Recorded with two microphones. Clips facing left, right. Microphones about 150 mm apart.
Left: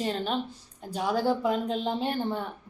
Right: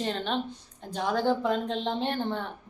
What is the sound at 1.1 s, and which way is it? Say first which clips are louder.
Speech: even; 40° left (ahead or behind).